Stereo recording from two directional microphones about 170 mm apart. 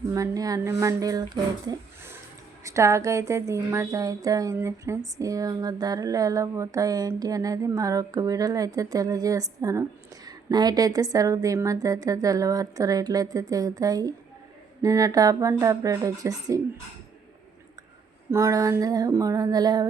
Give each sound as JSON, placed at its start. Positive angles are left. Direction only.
{"t": 0.1, "sound": "speech", "side_deg": -20}
{"t": 1.6, "sound": "a sound", "side_deg": -15}
{"t": 2.6, "sound": "speech", "side_deg": -15}
{"t": 18.3, "sound": "speech", "side_deg": -15}